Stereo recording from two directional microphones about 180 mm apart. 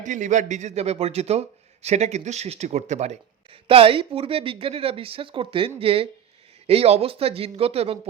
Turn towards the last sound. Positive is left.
turn(degrees=-35)  # may be behind; listen again after turning